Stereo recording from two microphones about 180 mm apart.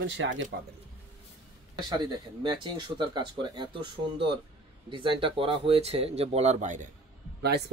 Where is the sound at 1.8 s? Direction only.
25° right (ahead or behind); by 6.9 s 45° right (ahead or behind).